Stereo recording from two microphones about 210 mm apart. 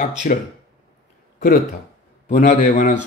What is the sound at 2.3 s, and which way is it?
Speech, 35° left (ahead or behind).